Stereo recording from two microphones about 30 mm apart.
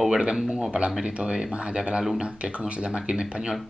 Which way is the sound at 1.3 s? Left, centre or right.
Right.